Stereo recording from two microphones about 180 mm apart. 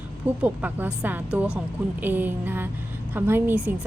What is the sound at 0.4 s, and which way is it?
A woman's voice, 10° right (ahead or behind).